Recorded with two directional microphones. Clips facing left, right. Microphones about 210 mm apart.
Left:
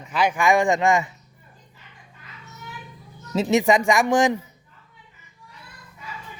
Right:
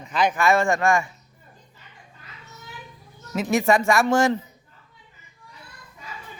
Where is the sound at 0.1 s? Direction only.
10° left (ahead or behind).